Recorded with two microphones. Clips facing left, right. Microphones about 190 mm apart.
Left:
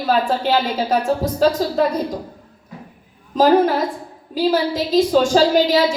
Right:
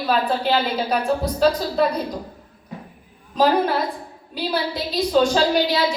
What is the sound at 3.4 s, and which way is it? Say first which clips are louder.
Speech: left 5 dB; 45° left (ahead or behind).